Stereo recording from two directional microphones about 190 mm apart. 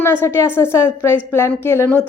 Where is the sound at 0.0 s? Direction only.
10° left (ahead or behind).